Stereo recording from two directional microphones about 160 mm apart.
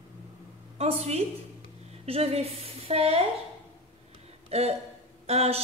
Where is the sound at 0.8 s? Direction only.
40° right (ahead or behind).